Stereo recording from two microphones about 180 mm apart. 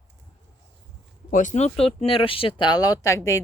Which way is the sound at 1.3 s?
45° left (ahead or behind).